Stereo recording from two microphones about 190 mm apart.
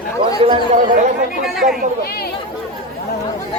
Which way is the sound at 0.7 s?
40° right (ahead or behind).